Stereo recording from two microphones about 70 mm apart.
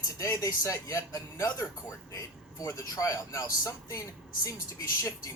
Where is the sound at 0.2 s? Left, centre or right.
Left.